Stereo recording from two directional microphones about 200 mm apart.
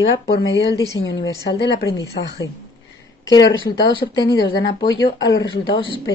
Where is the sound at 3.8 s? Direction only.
20° left (ahead or behind).